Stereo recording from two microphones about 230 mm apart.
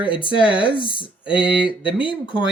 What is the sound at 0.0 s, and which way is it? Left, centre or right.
Speech, left.